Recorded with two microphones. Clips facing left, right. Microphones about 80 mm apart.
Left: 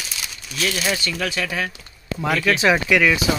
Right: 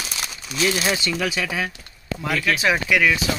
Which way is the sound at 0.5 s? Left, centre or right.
Centre.